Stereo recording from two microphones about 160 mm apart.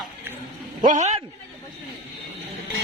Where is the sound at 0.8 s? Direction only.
45° right (ahead or behind).